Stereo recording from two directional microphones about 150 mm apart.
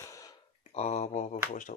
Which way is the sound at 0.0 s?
20° left (ahead or behind).